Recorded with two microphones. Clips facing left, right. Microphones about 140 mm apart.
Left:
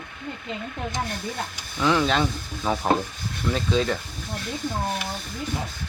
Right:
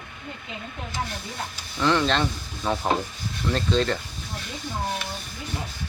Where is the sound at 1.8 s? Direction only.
5° left (ahead or behind).